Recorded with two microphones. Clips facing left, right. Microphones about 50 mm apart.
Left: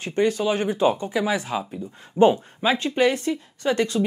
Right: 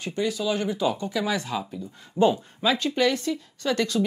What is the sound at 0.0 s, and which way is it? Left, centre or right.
Speech, left.